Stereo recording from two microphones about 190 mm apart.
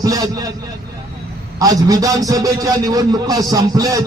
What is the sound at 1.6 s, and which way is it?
Music, 20° right (ahead or behind).